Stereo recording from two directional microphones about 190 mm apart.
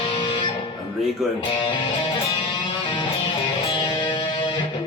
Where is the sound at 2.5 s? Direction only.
25° left (ahead or behind).